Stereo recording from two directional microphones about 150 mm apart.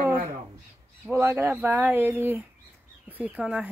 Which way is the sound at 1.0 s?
15° right (ahead or behind).